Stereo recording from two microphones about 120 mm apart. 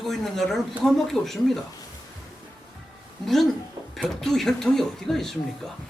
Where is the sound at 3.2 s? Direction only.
Centre (ahead or behind).